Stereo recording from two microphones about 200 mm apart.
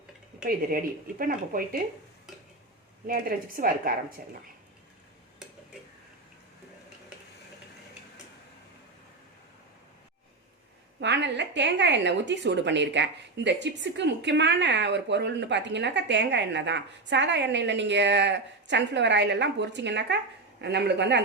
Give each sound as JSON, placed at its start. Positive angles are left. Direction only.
{"t": 1.2, "sound": "a woman's voice", "side_deg": -45}
{"t": 3.1, "sound": "a woman's voice", "side_deg": -45}
{"t": 11.0, "sound": "a woman's voice", "side_deg": -60}